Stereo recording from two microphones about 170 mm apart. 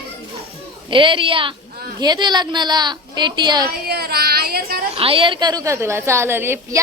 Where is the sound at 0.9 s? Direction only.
30° right (ahead or behind).